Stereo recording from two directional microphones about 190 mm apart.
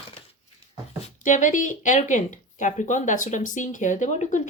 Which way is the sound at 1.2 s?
40° left (ahead or behind).